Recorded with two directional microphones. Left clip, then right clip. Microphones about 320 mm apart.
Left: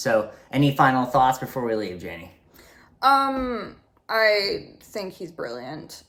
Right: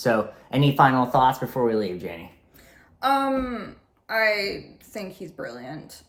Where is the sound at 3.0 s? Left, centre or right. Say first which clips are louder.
Left 3 dB; centre.